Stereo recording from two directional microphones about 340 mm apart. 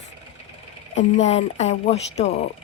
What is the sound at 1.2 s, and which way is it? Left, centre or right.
Speech, centre.